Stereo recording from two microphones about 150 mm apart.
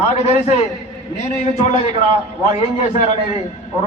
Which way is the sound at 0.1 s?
50° left (ahead or behind).